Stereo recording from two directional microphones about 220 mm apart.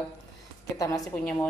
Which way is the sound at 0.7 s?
15° left (ahead or behind).